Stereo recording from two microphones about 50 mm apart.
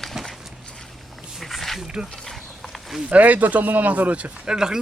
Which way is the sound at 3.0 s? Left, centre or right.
Right.